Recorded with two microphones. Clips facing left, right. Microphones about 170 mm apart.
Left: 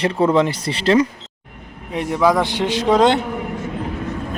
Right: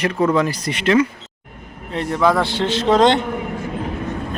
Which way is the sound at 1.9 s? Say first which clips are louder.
Left 1 dB; 15° left (ahead or behind).